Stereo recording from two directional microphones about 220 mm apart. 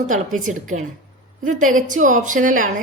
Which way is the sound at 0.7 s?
30° right (ahead or behind).